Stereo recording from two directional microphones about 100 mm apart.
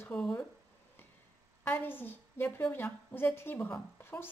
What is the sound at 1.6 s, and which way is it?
A woman's voice, 20° left (ahead or behind).